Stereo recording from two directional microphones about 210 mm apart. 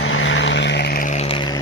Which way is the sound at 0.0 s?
65° left (ahead or behind).